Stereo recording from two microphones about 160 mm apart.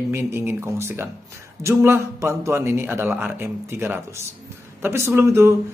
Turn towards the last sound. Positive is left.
turn(degrees=-15)  # may be behind; listen again after turning